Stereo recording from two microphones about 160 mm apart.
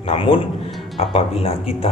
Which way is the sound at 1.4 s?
40° left (ahead or behind).